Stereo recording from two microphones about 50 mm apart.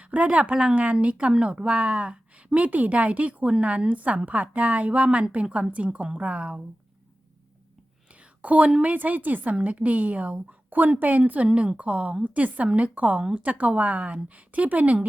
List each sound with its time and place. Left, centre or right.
0.0 s speech: right
0.5 s speech: centre
0.8 s a woman's voice: right
8.4 s a woman's voice: right